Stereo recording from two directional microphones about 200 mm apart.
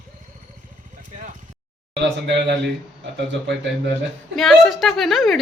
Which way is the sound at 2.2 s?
60° right (ahead or behind).